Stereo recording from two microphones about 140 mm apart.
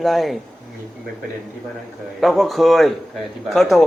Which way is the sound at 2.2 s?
Centre (ahead or behind).